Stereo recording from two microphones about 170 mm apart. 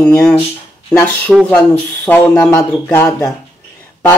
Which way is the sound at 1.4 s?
5° left (ahead or behind).